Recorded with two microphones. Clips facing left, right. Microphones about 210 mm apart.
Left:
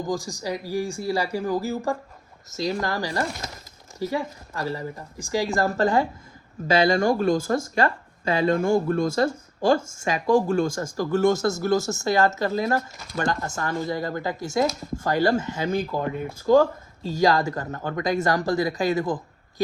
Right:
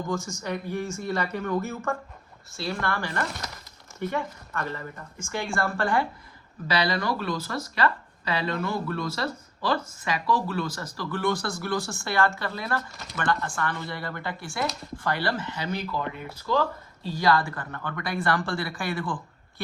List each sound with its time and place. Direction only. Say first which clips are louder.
0.0 s a man's voice: left 3 dB; 35° left (ahead or behind)